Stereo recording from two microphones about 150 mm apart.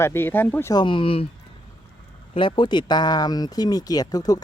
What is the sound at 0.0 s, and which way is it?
Speech, 15° left (ahead or behind).